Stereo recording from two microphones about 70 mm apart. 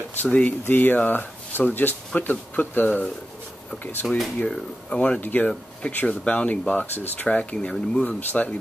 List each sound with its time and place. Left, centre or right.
0.2 s speech: left
4.4 s speech: centre
8.2 s speech: left